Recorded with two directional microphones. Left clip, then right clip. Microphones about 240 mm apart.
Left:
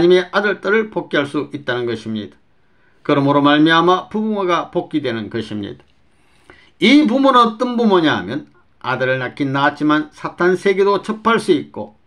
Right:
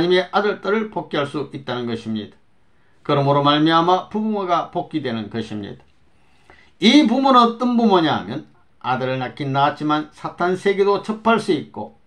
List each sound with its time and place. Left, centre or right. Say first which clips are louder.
0.0 s speech: left 4 dB; left
3.0 s a man's voice: left 3 dB; left